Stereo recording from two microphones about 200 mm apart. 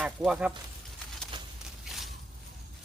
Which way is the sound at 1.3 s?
20° right (ahead or behind).